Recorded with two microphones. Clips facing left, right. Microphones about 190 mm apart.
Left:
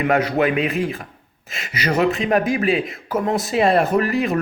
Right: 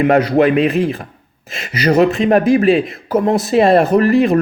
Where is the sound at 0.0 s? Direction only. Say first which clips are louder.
Right 6 dB; 40° right (ahead or behind).